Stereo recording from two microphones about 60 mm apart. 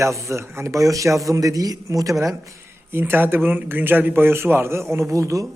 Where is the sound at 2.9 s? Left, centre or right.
Right.